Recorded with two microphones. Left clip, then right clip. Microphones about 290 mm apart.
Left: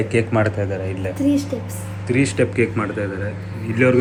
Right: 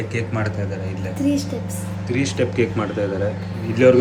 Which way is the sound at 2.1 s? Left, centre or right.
Centre.